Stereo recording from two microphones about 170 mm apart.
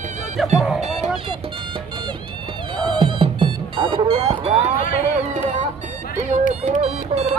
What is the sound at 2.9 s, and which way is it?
Music, 30° right (ahead or behind).